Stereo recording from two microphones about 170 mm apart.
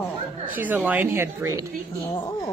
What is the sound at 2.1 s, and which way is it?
Speech, 20° left (ahead or behind).